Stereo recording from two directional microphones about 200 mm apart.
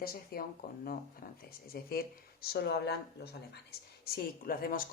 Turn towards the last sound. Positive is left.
turn(degrees=45)  # may be behind; listen again after turning